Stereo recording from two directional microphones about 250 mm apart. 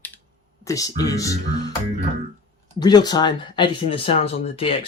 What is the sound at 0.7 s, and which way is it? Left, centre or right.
Speech, centre.